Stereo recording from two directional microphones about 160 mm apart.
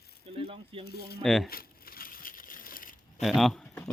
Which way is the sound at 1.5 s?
65° left (ahead or behind).